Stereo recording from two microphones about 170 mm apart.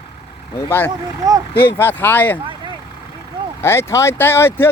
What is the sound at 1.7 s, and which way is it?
Speech, 10° left (ahead or behind).